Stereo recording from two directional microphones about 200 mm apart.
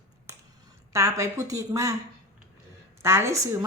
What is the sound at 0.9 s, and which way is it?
Speech, 15° right (ahead or behind).